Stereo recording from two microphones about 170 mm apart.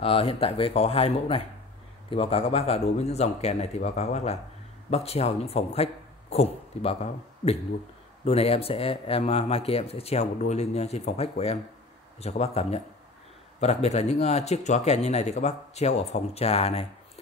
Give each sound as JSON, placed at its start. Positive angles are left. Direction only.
{"t": 0.0, "sound": "speech", "side_deg": 35}
{"t": 8.3, "sound": "speech", "side_deg": 35}